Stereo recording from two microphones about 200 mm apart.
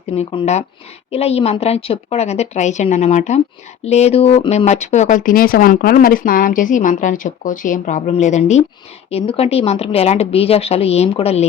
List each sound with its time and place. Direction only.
0.2 s speech: 30° left (ahead or behind)